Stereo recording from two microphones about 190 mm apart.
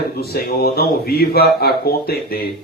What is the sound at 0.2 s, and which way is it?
Speech, 55° left (ahead or behind).